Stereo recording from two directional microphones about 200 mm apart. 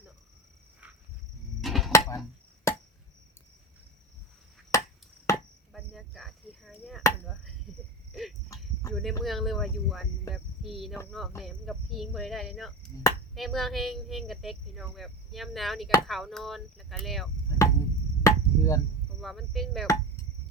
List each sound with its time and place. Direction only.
1.6 s a sound: centre (ahead or behind)
1.9 s a sound: 15° left (ahead or behind)
4.7 s a sound: 15° left (ahead or behind)
5.3 s chop: 15° left (ahead or behind)
5.7 s chop: centre (ahead or behind)
8.9 s cricket: centre (ahead or behind)
9.2 s speech: centre (ahead or behind)
17.5 s cricket: 15° left (ahead or behind)
18.2 s chop: 15° left (ahead or behind)
19.2 s speech: centre (ahead or behind)